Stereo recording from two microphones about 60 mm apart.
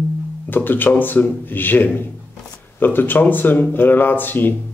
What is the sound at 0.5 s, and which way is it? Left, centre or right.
Speech, left.